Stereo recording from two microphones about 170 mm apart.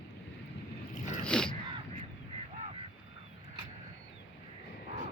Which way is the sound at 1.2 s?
5° left (ahead or behind).